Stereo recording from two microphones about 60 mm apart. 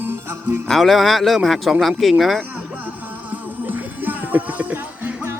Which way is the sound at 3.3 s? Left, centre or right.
Right.